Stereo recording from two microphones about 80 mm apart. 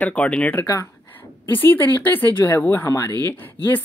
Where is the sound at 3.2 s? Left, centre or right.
Left.